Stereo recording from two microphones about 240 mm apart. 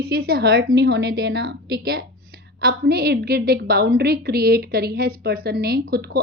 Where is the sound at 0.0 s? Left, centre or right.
Right.